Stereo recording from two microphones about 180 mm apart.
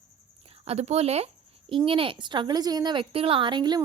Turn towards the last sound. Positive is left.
turn(degrees=-25)  # may be behind; listen again after turning